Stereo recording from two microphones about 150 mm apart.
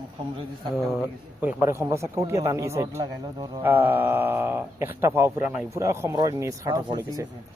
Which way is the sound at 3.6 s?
15° right (ahead or behind).